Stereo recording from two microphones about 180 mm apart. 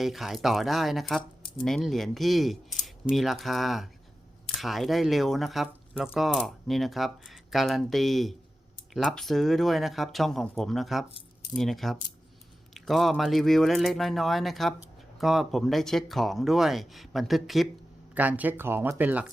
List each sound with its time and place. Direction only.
0.0 s speech: centre (ahead or behind)